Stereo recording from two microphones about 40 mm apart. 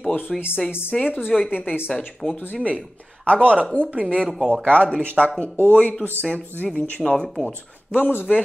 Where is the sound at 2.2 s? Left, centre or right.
Left.